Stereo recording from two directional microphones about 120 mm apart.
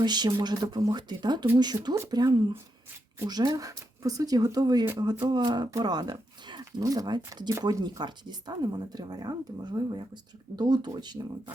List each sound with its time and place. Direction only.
0.0 s speech: 35° right (ahead or behind)